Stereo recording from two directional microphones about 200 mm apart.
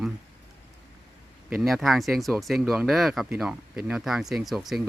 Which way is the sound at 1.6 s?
Centre (ahead or behind).